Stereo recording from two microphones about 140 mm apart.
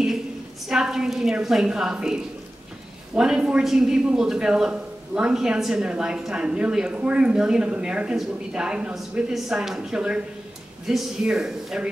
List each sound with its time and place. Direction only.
0.7 s a man's voice: 5° right (ahead or behind)
3.2 s a man's voice: 5° right (ahead or behind)